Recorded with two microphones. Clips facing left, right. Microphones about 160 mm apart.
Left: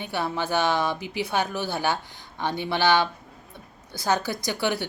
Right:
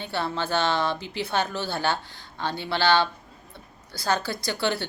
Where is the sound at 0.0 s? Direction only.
15° left (ahead or behind).